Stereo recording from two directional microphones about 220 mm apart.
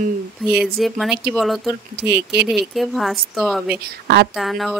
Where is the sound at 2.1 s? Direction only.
50° right (ahead or behind).